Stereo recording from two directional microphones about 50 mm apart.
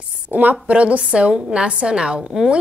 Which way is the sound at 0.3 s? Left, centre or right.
Right.